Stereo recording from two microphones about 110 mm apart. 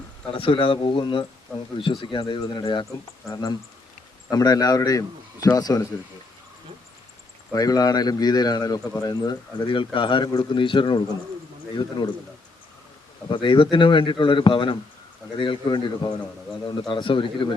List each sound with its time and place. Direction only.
0.3 s speech: 55° left (ahead or behind)
3.2 s a man's voice: 30° left (ahead or behind)
7.5 s a man's voice: 35° left (ahead or behind)
13.3 s speech: 50° left (ahead or behind)